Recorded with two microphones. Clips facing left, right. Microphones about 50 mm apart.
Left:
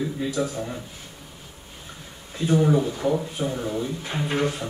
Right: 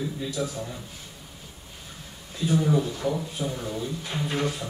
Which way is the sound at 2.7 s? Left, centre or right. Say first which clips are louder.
Left 3 dB; centre.